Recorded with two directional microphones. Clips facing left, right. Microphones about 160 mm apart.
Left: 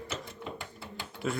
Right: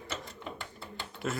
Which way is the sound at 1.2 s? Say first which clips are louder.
Left 2 dB; centre (ahead or behind).